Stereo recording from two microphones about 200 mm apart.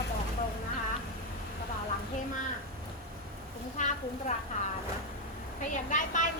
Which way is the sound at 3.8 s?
40° left (ahead or behind).